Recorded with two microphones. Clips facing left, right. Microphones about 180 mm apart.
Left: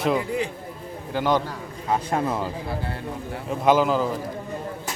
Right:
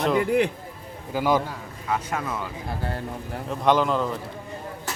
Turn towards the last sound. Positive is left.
turn(degrees=5)  # may be behind; listen again after turning